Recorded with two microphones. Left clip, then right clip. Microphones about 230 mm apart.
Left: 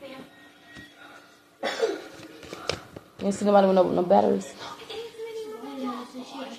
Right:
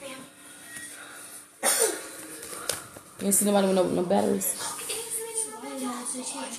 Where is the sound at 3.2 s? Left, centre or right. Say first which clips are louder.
Left 4 dB; right.